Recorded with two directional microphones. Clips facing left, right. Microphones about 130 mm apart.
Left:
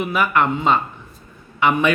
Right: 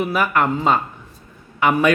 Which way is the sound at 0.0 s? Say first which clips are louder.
Even; 40° right (ahead or behind).